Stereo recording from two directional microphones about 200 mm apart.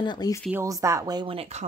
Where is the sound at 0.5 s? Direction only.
15° right (ahead or behind).